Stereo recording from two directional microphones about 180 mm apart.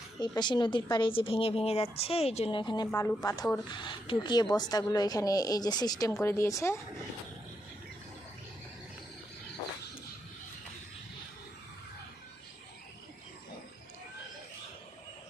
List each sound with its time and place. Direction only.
0.2 s speech: 25° left (ahead or behind)